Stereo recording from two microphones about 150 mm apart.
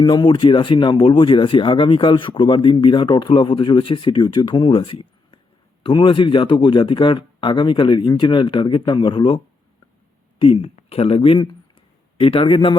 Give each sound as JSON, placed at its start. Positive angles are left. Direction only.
{"t": 0.0, "sound": "speech", "side_deg": 30}